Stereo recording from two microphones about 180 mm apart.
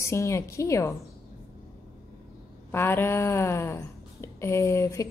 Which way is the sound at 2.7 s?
10° left (ahead or behind).